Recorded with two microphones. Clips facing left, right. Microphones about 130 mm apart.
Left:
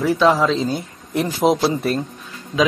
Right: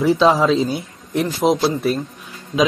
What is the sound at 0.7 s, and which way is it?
Speech, centre (ahead or behind).